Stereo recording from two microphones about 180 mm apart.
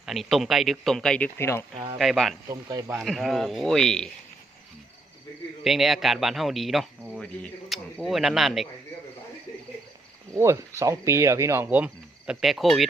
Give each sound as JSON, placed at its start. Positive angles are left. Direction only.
{"t": 0.0, "sound": "speech", "side_deg": 0}
{"t": 1.7, "sound": "speech", "side_deg": -30}
{"t": 2.0, "sound": "speech", "side_deg": 0}
{"t": 2.5, "sound": "speech", "side_deg": -20}
{"t": 2.9, "sound": "speech", "side_deg": 0}
{"t": 5.6, "sound": "speech", "side_deg": 0}
{"t": 10.3, "sound": "cricket", "side_deg": -15}